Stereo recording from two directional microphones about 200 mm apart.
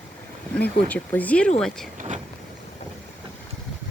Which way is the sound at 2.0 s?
35° right (ahead or behind).